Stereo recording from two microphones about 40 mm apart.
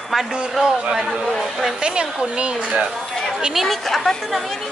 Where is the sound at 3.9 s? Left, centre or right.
Centre.